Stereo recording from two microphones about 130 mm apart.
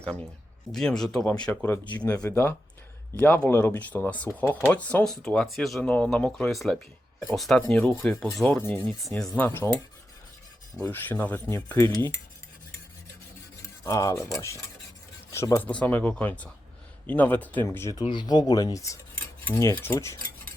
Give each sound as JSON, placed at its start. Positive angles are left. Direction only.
{"t": 0.7, "sound": "speech", "side_deg": 5}
{"t": 1.6, "sound": "speech", "side_deg": 15}
{"t": 9.0, "sound": "speech", "side_deg": 0}
{"t": 10.8, "sound": "speech", "side_deg": 20}
{"t": 13.8, "sound": "speech", "side_deg": 25}
{"t": 18.0, "sound": "speech", "side_deg": 35}